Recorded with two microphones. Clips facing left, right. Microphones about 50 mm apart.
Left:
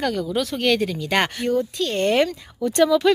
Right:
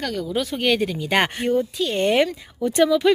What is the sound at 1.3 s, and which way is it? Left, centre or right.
Speech, right.